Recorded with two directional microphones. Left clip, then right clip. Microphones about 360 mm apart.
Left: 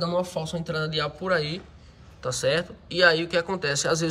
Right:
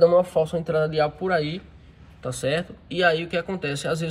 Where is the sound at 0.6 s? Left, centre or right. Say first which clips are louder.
Right 6 dB; centre.